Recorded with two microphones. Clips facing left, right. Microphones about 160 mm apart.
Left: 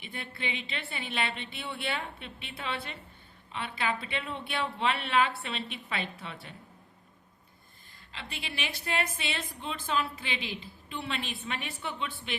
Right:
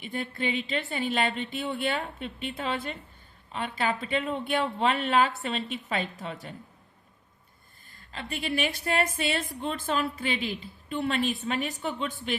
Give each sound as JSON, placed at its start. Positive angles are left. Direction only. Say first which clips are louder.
{"t": 0.0, "sound": "a woman's voice", "louder": "right 7 dB", "side_deg": -45}
{"t": 8.1, "sound": "a woman's voice", "louder": "right 10 dB", "side_deg": -45}